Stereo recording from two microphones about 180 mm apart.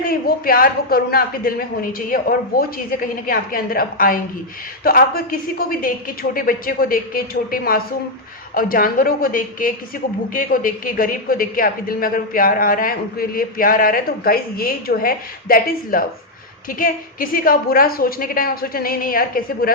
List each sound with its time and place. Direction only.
0.0 s a woman's voice: 55° left (ahead or behind)